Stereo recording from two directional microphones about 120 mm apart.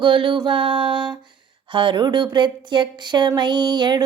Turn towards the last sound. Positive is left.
turn(degrees=-35)  # may be behind; listen again after turning